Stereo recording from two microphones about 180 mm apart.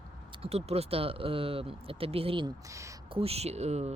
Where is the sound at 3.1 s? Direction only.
35° right (ahead or behind).